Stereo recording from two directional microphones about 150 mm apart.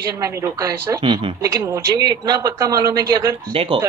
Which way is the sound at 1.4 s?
20° right (ahead or behind).